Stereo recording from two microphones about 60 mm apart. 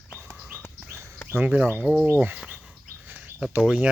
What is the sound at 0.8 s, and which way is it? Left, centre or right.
Bird, right.